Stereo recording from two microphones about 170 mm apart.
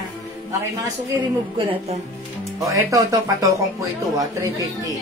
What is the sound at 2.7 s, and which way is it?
Speech, 15° right (ahead or behind).